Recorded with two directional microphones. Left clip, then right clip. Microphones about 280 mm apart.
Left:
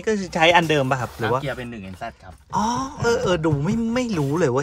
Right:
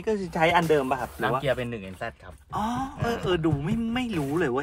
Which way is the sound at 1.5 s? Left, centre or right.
Right.